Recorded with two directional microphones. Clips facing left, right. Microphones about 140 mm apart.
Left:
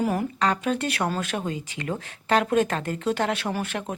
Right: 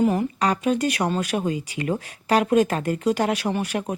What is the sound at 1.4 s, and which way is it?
Speech, 10° right (ahead or behind).